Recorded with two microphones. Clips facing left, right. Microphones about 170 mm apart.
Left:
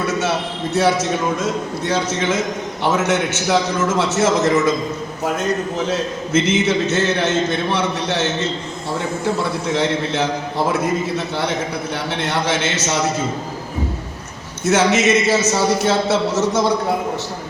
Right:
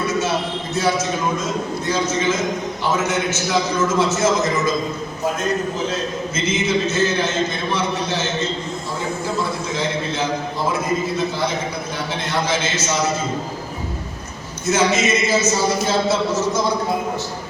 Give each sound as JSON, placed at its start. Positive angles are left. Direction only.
{"t": 0.2, "sound": "a man's voice", "side_deg": 70}
{"t": 1.9, "sound": "a man's voice", "side_deg": 70}
{"t": 5.9, "sound": "a man's voice", "side_deg": 70}
{"t": 14.7, "sound": "a man's voice", "side_deg": 75}